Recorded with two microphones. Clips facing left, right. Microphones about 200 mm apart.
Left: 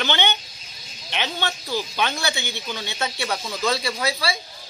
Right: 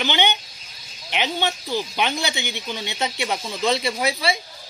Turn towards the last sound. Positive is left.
turn(degrees=-20)  # may be behind; listen again after turning